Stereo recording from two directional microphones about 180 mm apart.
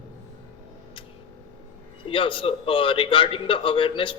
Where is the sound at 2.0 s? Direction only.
30° left (ahead or behind).